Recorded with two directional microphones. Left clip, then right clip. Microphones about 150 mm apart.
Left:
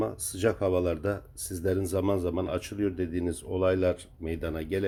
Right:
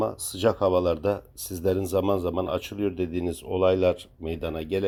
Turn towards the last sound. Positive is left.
turn(degrees=-10)  # may be behind; listen again after turning